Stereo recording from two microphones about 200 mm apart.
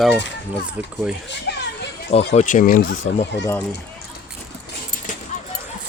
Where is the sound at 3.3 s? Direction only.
60° left (ahead or behind).